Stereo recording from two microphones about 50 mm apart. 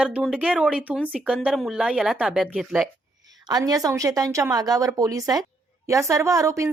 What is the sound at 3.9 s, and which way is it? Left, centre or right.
A woman's voice, right.